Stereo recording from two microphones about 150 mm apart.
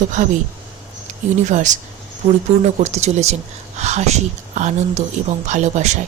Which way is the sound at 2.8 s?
50° right (ahead or behind).